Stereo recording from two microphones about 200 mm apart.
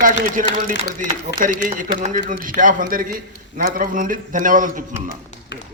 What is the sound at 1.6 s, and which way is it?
A man's voice, 45° right (ahead or behind).